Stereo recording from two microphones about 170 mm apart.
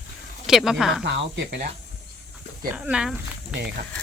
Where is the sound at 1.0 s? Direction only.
90° right.